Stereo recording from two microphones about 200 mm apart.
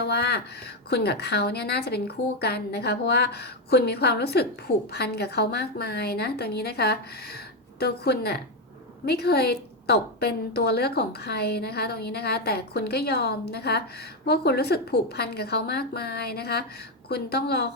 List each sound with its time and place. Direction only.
0.0 s a woman's voice: 55° left (ahead or behind)